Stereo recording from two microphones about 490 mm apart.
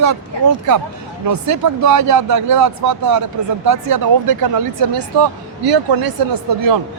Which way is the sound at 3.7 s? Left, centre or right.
Right.